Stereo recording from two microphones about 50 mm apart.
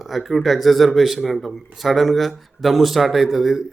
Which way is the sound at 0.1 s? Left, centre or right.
Centre.